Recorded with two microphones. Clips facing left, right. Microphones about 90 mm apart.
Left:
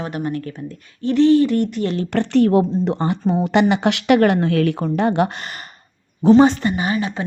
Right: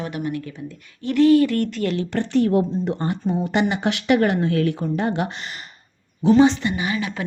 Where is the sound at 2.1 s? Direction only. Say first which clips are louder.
Left 5 dB; 65° left (ahead or behind); by 7.3 s 30° left (ahead or behind).